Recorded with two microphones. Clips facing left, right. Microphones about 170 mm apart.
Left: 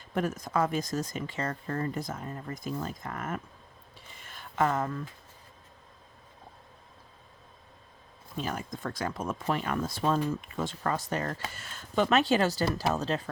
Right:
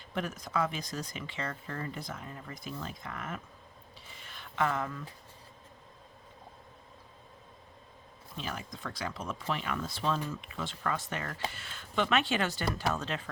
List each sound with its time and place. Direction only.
0.1 s speech: 45° left (ahead or behind)
4.3 s a sound: 45° left (ahead or behind)
8.4 s speech: 45° left (ahead or behind)